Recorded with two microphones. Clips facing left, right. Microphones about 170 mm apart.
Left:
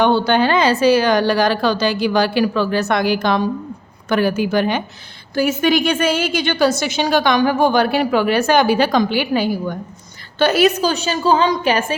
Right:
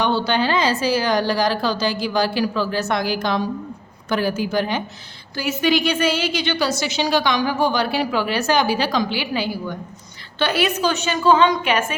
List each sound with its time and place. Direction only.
0.0 s a woman's voice: 55° left (ahead or behind)
5.3 s a woman's voice: 50° left (ahead or behind); by 11.9 s 35° left (ahead or behind)